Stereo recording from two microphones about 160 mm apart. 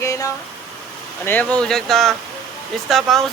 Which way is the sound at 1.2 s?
10° left (ahead or behind).